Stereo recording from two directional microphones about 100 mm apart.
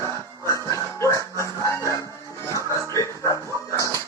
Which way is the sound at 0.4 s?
30° left (ahead or behind).